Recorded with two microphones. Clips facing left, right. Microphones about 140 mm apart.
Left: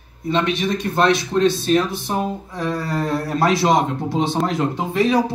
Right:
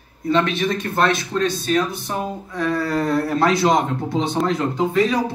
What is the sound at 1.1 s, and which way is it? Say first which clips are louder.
Speech: left 4 dB; 45° right (ahead or behind).